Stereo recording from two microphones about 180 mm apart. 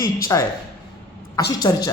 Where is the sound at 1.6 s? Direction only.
20° left (ahead or behind).